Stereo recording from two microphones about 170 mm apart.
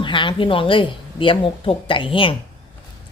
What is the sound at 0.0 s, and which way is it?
A woman's voice, 30° left (ahead or behind).